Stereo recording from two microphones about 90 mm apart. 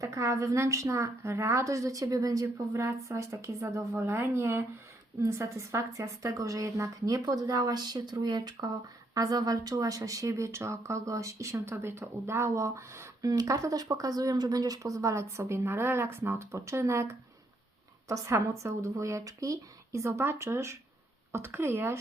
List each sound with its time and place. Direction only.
0.0 s speech: 35° right (ahead or behind)